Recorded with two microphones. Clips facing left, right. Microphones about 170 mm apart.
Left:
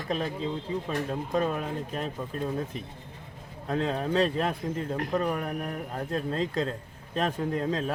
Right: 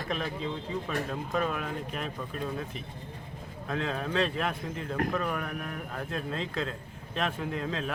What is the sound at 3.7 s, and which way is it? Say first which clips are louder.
A man's voice: left 4 dB; 35° left (ahead or behind).